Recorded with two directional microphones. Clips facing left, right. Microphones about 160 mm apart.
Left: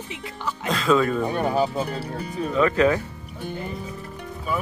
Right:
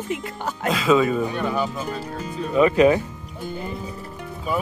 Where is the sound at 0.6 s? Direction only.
5° right (ahead or behind).